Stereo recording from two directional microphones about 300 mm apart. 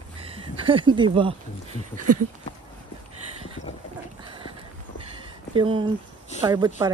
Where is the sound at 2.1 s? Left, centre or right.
Right.